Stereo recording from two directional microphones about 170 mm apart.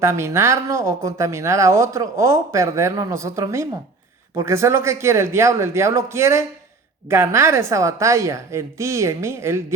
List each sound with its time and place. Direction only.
0.0 s speech: 15° right (ahead or behind)